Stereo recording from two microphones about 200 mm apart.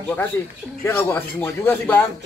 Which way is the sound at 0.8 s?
10° left (ahead or behind).